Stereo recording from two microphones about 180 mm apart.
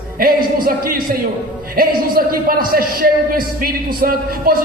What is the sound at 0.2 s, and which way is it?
Music, 55° right (ahead or behind).